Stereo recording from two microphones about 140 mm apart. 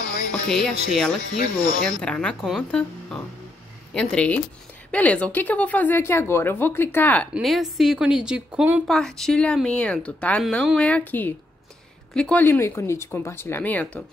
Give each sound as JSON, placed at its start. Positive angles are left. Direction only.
{"t": 0.3, "sound": "speech", "side_deg": 5}
{"t": 7.3, "sound": "speech", "side_deg": 0}
{"t": 8.8, "sound": "speech", "side_deg": 5}